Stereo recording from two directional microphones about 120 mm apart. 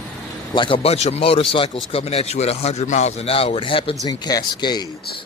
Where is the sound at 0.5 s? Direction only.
45° left (ahead or behind).